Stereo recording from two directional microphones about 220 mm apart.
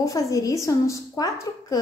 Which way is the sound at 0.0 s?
15° left (ahead or behind).